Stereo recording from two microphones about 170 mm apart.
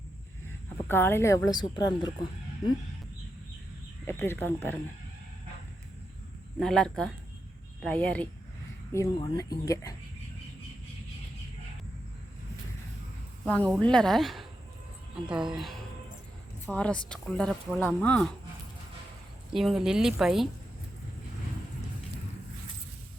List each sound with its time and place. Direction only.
0.9 s speech: 15° left (ahead or behind)
4.0 s speech: 15° left (ahead or behind)
6.6 s speech: 5° left (ahead or behind)
8.9 s speech: 20° left (ahead or behind)
13.4 s speech: 10° left (ahead or behind)
19.5 s speech: centre (ahead or behind)